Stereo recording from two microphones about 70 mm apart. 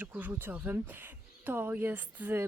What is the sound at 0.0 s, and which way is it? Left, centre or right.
Speech, right.